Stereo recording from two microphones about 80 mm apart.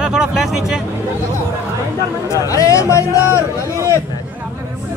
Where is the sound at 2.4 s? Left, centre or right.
Left.